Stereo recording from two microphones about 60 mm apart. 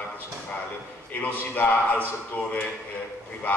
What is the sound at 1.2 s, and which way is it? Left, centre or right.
Speech, left.